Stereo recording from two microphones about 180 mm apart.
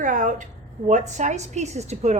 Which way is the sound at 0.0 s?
45° right (ahead or behind).